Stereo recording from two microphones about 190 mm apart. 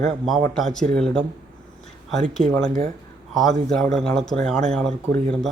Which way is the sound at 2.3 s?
5° left (ahead or behind).